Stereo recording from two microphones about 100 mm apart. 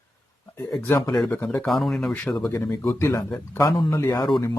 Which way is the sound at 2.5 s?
25° left (ahead or behind).